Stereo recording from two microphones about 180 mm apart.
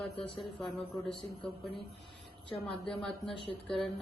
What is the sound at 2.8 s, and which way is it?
Speech, centre (ahead or behind).